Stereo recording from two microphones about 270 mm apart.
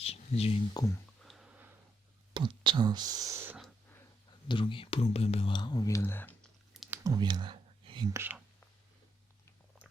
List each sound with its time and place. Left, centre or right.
0.0 s speech: left
1.2 s a sound: centre
2.3 s speech: centre
4.4 s speech: centre
7.0 s speech: centre